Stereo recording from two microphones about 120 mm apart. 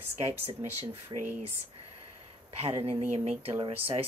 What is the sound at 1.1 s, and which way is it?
Speech, 40° right (ahead or behind).